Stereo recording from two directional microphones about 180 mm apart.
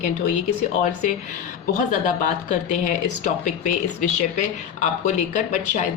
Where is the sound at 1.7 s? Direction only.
45° left (ahead or behind).